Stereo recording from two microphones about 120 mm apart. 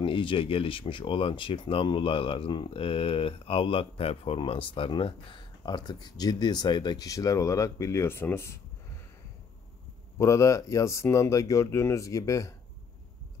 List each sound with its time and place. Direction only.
0.0 s speech: 45° left (ahead or behind); by 8.5 s 20° left (ahead or behind)
10.1 s speech: 25° left (ahead or behind)